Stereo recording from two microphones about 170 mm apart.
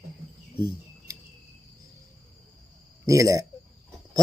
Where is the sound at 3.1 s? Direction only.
20° right (ahead or behind).